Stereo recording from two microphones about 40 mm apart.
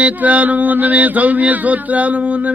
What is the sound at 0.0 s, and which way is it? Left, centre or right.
Speech, right.